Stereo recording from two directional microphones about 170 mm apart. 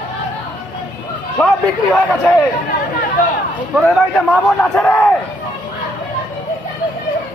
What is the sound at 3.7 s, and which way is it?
A man's voice, centre (ahead or behind).